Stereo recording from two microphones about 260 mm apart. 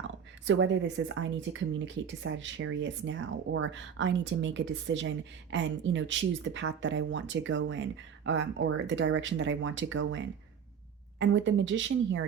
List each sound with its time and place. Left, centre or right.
0.4 s speech: right